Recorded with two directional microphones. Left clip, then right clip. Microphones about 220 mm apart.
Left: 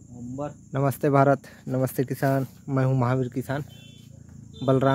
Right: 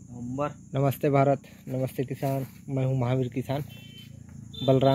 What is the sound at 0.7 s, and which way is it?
Speech, 5° left (ahead or behind).